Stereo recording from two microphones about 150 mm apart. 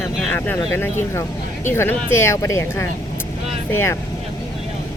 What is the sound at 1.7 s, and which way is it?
Speech, 15° left (ahead or behind).